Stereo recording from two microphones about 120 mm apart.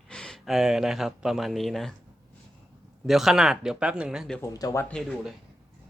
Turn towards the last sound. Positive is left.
turn(degrees=5)  # may be behind; listen again after turning